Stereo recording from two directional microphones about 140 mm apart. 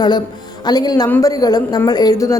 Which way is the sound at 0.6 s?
30° left (ahead or behind).